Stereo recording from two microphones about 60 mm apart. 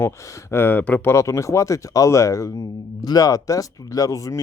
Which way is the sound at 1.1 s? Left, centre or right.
Left.